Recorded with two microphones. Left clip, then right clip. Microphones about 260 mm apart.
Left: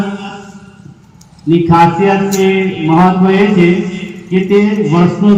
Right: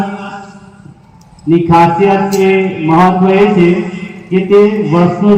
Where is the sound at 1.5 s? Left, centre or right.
Left.